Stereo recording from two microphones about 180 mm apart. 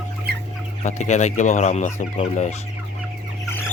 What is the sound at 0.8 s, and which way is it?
Fowl, 40° left (ahead or behind).